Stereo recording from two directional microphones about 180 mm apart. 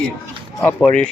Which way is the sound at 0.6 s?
5° left (ahead or behind).